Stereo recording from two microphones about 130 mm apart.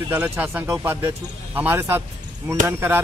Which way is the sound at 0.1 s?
20° right (ahead or behind).